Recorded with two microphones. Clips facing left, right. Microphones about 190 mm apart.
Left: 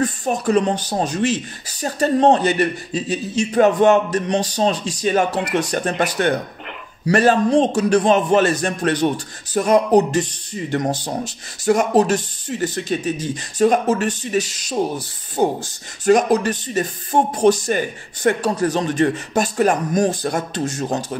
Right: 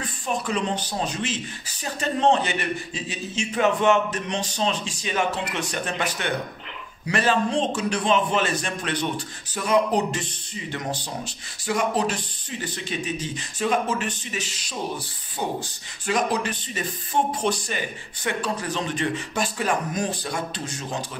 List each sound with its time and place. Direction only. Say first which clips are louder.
0.0 s a man's voice: left 8 dB; 45° left (ahead or behind)